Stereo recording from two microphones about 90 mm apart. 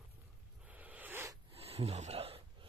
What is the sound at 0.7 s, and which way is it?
Zipper, 20° right (ahead or behind).